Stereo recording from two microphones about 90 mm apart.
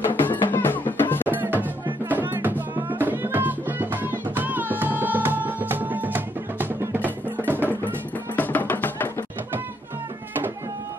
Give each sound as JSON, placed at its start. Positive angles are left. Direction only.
{"t": 0.1, "sound": "music", "side_deg": 20}
{"t": 1.3, "sound": "music", "side_deg": -20}
{"t": 8.4, "sound": "music", "side_deg": 20}